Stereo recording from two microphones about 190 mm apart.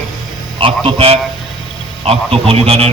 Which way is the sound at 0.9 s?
30° right (ahead or behind).